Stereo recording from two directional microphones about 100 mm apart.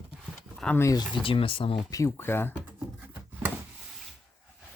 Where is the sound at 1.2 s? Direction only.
65° left (ahead or behind).